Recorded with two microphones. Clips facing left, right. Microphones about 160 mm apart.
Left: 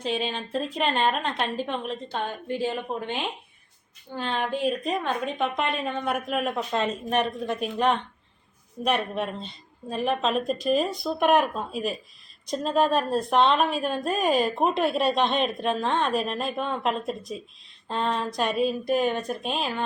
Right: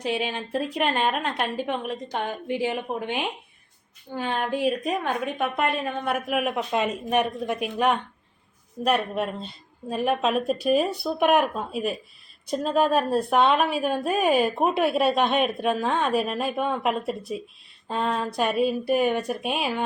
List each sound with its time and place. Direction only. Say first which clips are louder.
0.0 s a woman's voice: right 1 dB; 10° right (ahead or behind)